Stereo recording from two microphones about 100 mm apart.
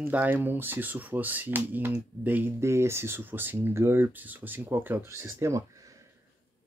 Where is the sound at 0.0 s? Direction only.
15° right (ahead or behind).